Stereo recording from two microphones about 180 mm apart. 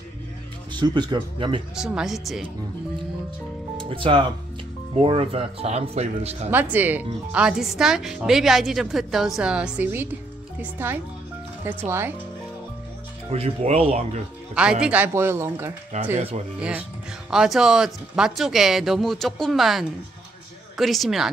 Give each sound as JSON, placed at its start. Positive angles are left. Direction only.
{"t": 0.7, "sound": "speech", "side_deg": -25}
{"t": 1.8, "sound": "a woman's voice", "side_deg": -5}
{"t": 3.9, "sound": "speech", "side_deg": -30}
{"t": 6.5, "sound": "a woman's voice", "side_deg": -10}
{"t": 13.3, "sound": "speech", "side_deg": -35}
{"t": 14.5, "sound": "speech", "side_deg": -5}
{"t": 15.9, "sound": "speech", "side_deg": -40}
{"t": 16.5, "sound": "a woman's voice", "side_deg": -5}